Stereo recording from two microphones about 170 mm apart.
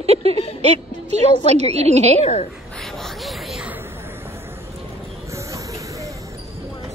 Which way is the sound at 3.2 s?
5° right (ahead or behind).